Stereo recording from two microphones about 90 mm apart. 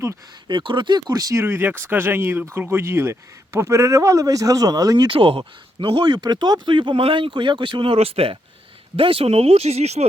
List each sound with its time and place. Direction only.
0.4 s speech: 65° right (ahead or behind); by 5.0 s 45° right (ahead or behind)
5.0 s speech: 80° right